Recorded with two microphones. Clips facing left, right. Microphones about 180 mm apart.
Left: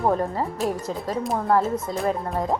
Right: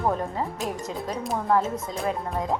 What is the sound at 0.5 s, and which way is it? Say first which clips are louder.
Speech: left 4 dB; 35° left (ahead or behind).